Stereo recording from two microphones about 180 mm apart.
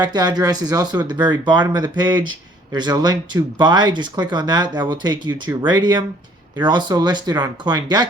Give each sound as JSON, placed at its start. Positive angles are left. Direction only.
{"t": 0.0, "sound": "speech", "side_deg": -25}